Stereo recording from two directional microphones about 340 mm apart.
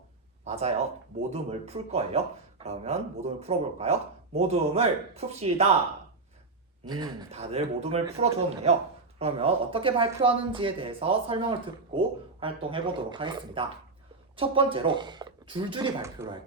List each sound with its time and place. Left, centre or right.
0.4 s speech: centre
6.8 s speech: centre